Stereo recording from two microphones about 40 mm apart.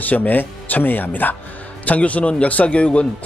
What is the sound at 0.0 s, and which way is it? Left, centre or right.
Speech, left.